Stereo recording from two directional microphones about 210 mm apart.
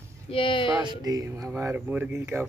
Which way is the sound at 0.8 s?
20° right (ahead or behind).